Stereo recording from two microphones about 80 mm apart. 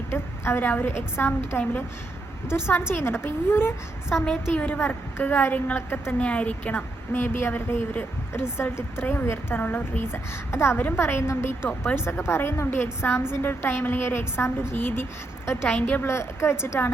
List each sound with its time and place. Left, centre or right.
0.1 s a woman's voice: left
4.1 s a woman's voice: centre
16.0 s a woman's voice: left